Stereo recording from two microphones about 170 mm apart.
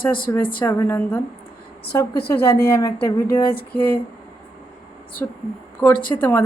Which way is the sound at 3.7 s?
15° left (ahead or behind).